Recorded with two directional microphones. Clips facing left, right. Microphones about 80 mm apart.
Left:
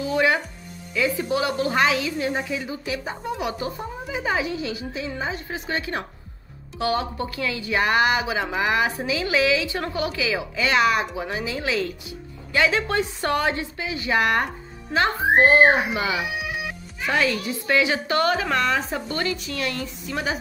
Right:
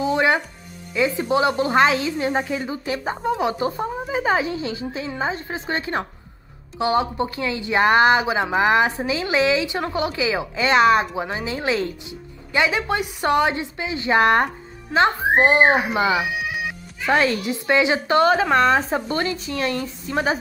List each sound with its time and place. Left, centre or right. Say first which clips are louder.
0.0 s music: right 2 dB; right
0.9 s a woman's voice: right 3 dB; right
12.5 s speech: even; centre; by 14.5 s right
15.0 s a woman's voice: right 2 dB; right